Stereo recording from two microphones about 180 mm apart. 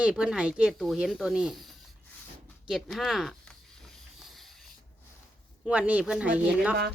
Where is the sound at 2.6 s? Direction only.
Centre (ahead or behind).